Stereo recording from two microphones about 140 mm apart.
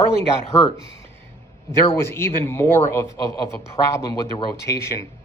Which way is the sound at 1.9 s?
15° left (ahead or behind).